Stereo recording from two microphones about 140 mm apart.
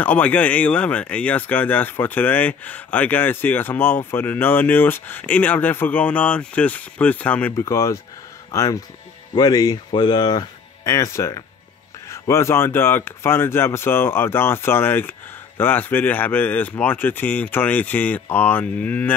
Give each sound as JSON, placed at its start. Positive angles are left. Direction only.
{"t": 0.0, "sound": "speech", "side_deg": 10}
{"t": 7.5, "sound": "speech", "side_deg": 20}